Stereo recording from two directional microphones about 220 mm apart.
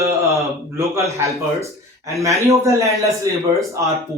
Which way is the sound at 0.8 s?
15° right (ahead or behind).